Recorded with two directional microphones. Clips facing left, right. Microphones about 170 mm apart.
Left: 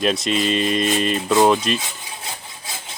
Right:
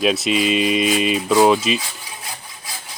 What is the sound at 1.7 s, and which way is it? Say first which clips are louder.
Rub: right 1 dB; 25° left (ahead or behind).